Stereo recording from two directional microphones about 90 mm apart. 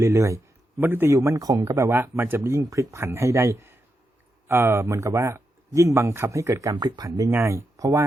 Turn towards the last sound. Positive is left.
turn(degrees=-35)  # may be behind; listen again after turning